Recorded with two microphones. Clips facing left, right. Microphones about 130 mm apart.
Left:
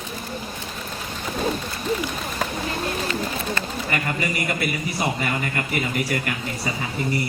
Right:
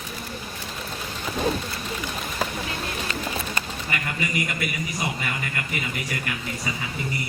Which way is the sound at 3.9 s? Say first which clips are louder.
Left 2 dB; 40° left (ahead or behind).